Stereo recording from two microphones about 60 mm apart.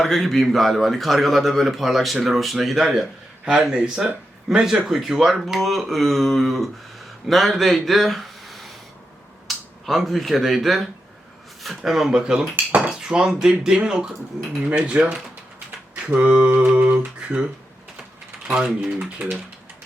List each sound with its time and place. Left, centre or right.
0.0 s a man's voice: centre
18.4 s speech: centre